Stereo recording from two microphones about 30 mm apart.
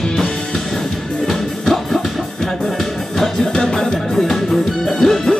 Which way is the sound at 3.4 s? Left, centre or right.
Left.